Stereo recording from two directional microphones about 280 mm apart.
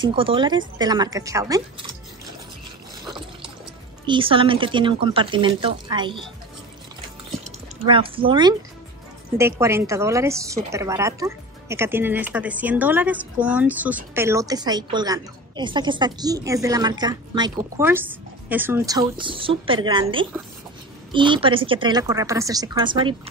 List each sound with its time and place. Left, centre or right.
0.0 s a woman's voice: centre
4.0 s a woman's voice: centre
7.4 s a woman's voice: centre